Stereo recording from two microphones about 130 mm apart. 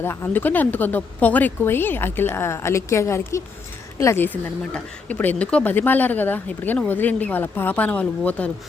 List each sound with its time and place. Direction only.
0.0 s a woman's voice: 20° left (ahead or behind)